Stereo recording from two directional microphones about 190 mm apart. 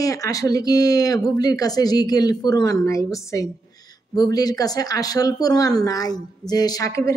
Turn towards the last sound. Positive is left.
turn(degrees=15)  # may be behind; listen again after turning